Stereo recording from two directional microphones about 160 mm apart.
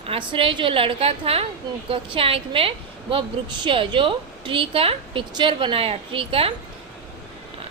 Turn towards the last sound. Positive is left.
turn(degrees=-35)  # may be behind; listen again after turning